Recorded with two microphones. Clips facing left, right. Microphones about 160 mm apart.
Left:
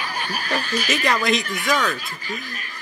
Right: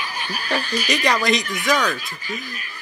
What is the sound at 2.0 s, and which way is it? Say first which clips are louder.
Speech: even; 40° left (ahead or behind).